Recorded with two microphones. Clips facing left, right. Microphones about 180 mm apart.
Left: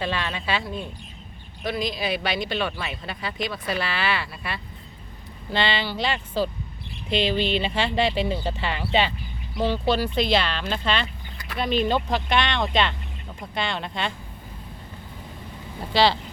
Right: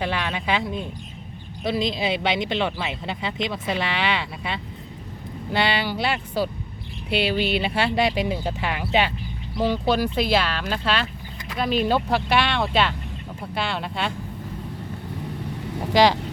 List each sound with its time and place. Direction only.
0.0 s speech: 15° right (ahead or behind)
15.9 s speech: 15° right (ahead or behind)